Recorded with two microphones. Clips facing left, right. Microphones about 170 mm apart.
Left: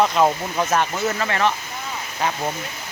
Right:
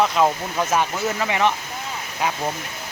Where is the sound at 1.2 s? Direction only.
10° right (ahead or behind).